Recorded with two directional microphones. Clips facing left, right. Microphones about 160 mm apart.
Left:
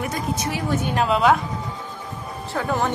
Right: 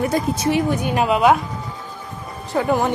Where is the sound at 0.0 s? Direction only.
30° right (ahead or behind).